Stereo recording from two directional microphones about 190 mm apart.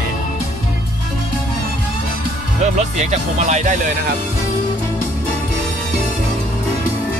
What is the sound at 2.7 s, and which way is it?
Speech, 35° right (ahead or behind).